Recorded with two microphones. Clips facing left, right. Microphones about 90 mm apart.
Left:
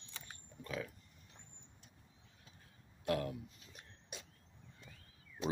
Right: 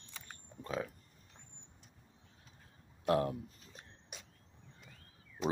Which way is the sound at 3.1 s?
35° right (ahead or behind).